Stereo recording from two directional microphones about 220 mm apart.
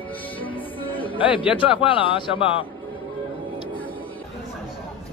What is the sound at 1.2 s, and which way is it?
Speech, 5° right (ahead or behind).